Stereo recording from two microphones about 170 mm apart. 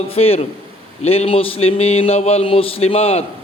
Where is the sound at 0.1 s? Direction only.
35° left (ahead or behind).